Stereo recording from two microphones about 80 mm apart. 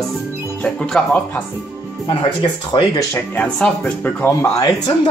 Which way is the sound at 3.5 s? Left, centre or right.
Centre.